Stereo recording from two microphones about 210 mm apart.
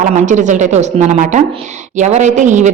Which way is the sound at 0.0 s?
35° right (ahead or behind).